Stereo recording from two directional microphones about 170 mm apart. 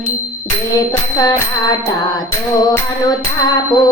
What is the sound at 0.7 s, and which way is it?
Tambourine, 25° left (ahead or behind).